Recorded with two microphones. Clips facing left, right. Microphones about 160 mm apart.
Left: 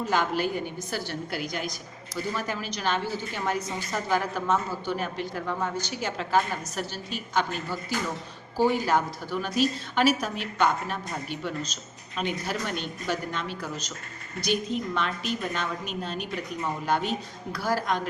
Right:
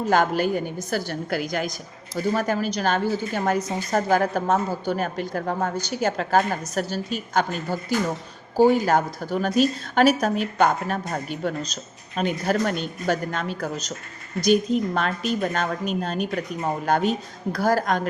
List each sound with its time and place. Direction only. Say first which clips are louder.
0.1 s a woman's voice: right 7 dB; 45° right (ahead or behind)